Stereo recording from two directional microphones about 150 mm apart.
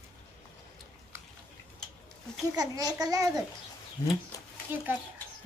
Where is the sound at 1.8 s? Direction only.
5° left (ahead or behind).